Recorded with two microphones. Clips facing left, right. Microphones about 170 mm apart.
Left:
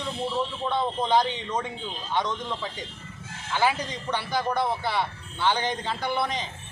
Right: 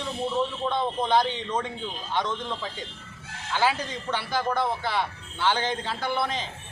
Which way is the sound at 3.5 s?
15° left (ahead or behind).